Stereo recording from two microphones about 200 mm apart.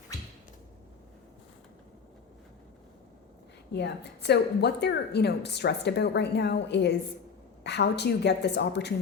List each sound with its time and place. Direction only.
3.7 s a woman's voice: 55° left (ahead or behind)